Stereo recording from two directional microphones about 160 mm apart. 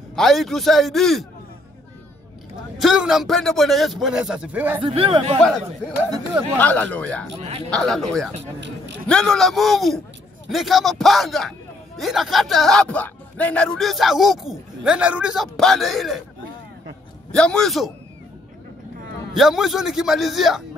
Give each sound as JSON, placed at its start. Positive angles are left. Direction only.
{"t": 0.1, "sound": "speech", "side_deg": 0}
{"t": 2.8, "sound": "speech", "side_deg": -5}
{"t": 4.7, "sound": "speech", "side_deg": -35}
{"t": 5.4, "sound": "speech", "side_deg": 5}
{"t": 7.3, "sound": "speech", "side_deg": -40}
{"t": 7.7, "sound": "speech", "side_deg": 0}
{"t": 8.4, "sound": "speech", "side_deg": -90}
{"t": 9.0, "sound": "speech", "side_deg": 5}
{"t": 17.3, "sound": "speech", "side_deg": 5}
{"t": 19.3, "sound": "speech", "side_deg": 0}